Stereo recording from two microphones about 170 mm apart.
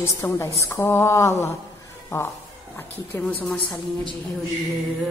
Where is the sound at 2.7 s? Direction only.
10° left (ahead or behind).